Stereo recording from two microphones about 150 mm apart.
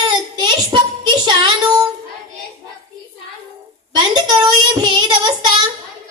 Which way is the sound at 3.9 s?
25° right (ahead or behind).